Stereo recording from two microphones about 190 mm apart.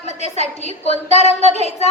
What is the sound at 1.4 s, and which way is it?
Speech, 35° right (ahead or behind).